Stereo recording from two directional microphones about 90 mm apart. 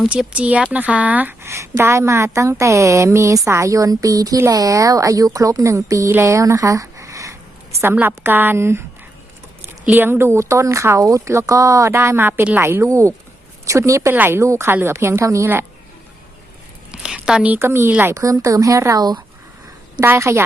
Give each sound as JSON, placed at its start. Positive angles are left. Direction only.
{"t": 0.1, "sound": "speech", "side_deg": -15}
{"t": 7.9, "sound": "a woman's voice", "side_deg": -25}
{"t": 14.1, "sound": "a woman's voice", "side_deg": -25}
{"t": 16.9, "sound": "a sound", "side_deg": -10}
{"t": 17.7, "sound": "a woman's voice", "side_deg": -30}